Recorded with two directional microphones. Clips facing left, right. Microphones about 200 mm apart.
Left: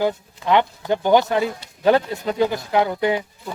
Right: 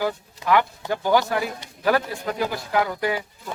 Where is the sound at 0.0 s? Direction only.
25° left (ahead or behind).